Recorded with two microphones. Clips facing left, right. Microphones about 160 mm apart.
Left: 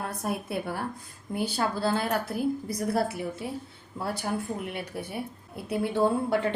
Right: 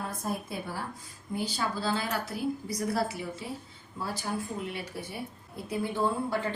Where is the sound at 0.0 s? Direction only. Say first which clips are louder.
Left 2 dB; 70° left (ahead or behind).